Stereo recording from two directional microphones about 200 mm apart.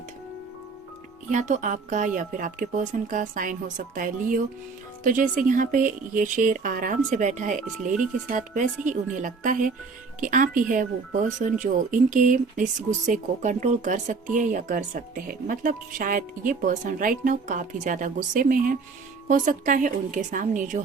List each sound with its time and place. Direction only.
1.3 s speech: 40° right (ahead or behind)